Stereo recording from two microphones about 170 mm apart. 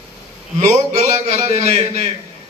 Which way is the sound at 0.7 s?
45° right (ahead or behind).